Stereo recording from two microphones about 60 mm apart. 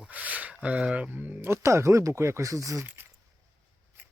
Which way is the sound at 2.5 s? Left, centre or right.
Right.